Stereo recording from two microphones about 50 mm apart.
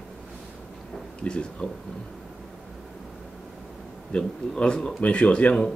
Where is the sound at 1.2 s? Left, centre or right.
Left.